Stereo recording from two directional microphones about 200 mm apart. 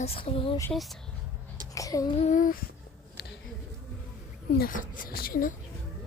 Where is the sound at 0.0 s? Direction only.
30° left (ahead or behind).